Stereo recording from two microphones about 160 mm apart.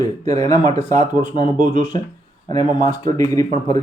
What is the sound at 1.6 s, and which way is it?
Speech, 50° right (ahead or behind).